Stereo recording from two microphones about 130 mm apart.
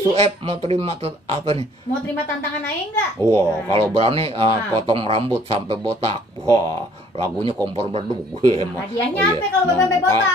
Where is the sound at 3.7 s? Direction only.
50° right (ahead or behind).